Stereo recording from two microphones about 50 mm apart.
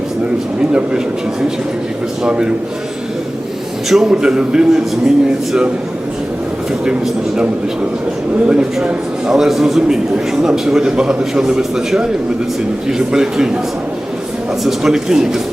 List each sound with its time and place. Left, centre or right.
0.6 s a man's voice: centre
3.8 s a man's voice: centre
4.1 s a man's voice: centre
6.8 s a man's voice: centre
8.4 s a man's voice: right
9.3 s a man's voice: centre
14.6 s a man's voice: centre